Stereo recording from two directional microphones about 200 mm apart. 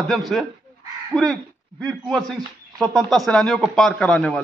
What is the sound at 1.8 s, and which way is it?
A man's voice, centre (ahead or behind).